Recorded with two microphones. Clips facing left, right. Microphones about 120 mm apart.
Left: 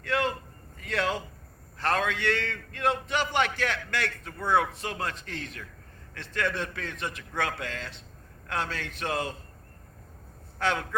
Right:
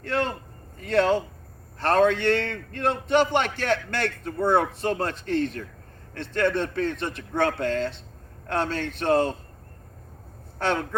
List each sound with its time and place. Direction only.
0.0 s a man's voice: 30° right (ahead or behind)